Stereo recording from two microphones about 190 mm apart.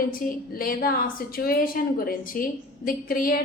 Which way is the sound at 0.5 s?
50° left (ahead or behind).